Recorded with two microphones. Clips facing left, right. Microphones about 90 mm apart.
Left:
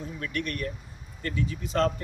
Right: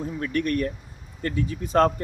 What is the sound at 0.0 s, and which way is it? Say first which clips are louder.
Speech: right 7 dB; 40° right (ahead or behind).